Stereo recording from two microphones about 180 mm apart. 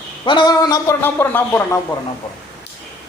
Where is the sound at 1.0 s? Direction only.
10° left (ahead or behind).